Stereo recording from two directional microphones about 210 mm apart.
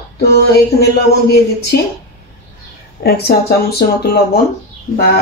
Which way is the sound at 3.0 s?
50° left (ahead or behind).